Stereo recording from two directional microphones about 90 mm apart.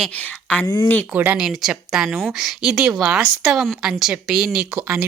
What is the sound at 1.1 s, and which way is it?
Speech, 15° right (ahead or behind).